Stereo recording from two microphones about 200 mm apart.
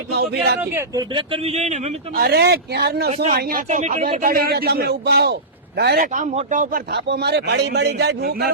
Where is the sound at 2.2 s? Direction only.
55° right (ahead or behind).